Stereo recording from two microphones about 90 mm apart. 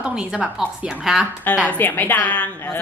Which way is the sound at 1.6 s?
20° left (ahead or behind).